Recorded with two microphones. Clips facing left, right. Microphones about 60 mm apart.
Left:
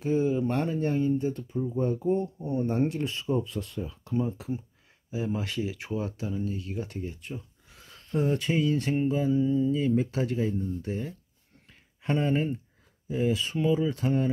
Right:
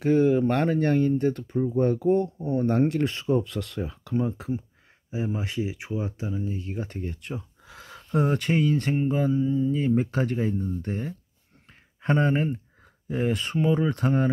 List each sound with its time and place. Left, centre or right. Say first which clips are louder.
0.0 s a sound: right 6 dB; right
0.5 s speech: right 5 dB; right
4.2 s speech: right 2 dB; right
5.1 s speech: right 1 dB; right
7.0 s speech: right 3 dB; right
9.3 s music: even; centre
9.7 s speech: right 2 dB; right
13.1 s speech: right 1 dB; right